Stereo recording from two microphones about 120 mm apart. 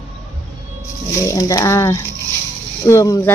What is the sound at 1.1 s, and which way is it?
Speech, 25° left (ahead or behind).